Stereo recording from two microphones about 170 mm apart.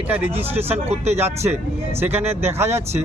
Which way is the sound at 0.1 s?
5° right (ahead or behind).